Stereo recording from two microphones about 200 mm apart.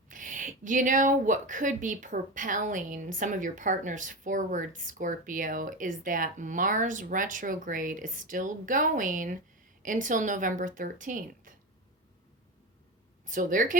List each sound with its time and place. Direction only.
0.1 s a woman's voice: 40° right (ahead or behind)
13.2 s a woman's voice: 40° right (ahead or behind)